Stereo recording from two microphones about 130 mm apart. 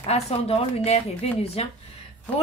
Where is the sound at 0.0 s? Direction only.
55° left (ahead or behind).